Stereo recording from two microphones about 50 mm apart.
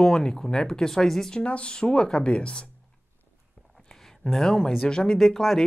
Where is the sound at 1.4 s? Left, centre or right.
Left.